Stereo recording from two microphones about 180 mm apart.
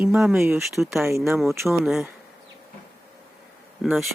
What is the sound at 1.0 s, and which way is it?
Speech, 15° right (ahead or behind).